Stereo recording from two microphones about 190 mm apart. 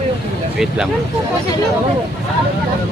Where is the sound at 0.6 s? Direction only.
5° right (ahead or behind).